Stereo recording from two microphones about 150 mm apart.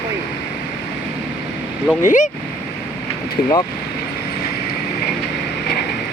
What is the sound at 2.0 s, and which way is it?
Speech, 55° left (ahead or behind).